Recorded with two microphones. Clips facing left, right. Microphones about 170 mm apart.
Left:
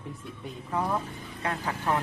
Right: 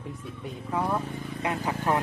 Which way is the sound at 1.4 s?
15° right (ahead or behind).